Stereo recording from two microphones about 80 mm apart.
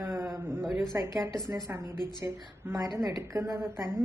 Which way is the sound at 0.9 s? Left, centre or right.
Right.